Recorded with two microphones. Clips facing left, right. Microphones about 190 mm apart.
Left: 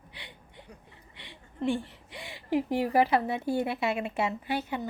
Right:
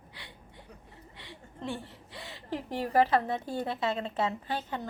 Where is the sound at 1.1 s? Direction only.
15° left (ahead or behind).